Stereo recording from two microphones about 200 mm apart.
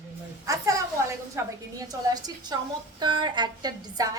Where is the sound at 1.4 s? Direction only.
15° right (ahead or behind).